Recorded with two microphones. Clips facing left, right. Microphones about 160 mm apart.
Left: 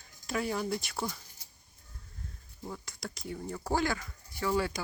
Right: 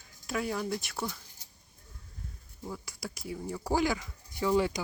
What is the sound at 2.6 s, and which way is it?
Speech, 5° right (ahead or behind).